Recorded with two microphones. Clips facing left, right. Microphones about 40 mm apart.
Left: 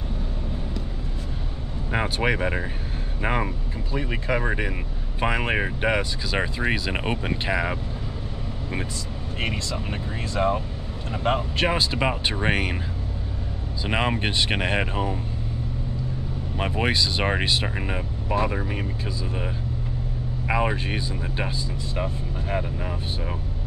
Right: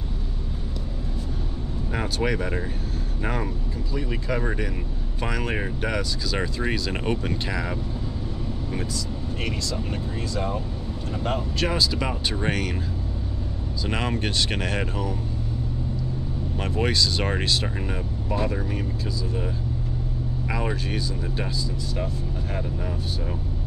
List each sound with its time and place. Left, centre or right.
1.9 s speech: left
9.4 s speech: left
13.8 s speech: left
16.5 s speech: left
20.4 s speech: left